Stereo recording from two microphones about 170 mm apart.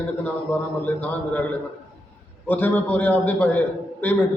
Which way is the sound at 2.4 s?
10° left (ahead or behind).